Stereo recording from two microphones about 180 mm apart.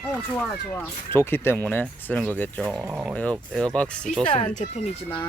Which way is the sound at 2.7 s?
15° right (ahead or behind).